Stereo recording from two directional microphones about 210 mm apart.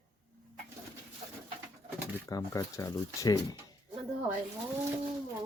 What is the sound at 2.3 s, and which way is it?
Speech, 15° left (ahead or behind).